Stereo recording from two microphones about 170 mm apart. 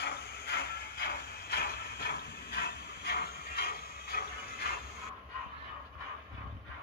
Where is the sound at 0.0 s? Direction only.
75° left (ahead or behind).